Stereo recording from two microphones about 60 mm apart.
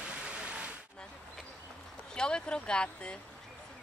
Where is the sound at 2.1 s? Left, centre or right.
Centre.